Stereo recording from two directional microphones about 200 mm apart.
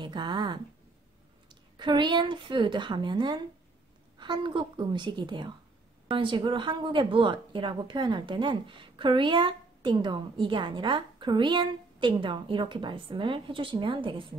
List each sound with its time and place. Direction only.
0.0 s a woman's voice: 20° right (ahead or behind)